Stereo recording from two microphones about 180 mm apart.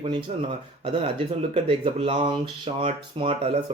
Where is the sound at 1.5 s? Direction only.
30° right (ahead or behind).